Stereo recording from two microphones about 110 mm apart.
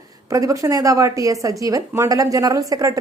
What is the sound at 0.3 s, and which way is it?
A woman's voice, 30° right (ahead or behind).